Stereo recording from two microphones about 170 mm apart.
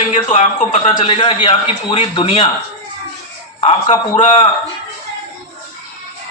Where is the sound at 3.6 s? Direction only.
45° left (ahead or behind).